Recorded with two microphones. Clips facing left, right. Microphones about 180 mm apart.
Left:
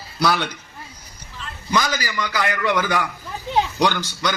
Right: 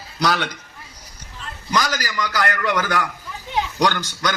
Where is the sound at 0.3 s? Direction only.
10° left (ahead or behind).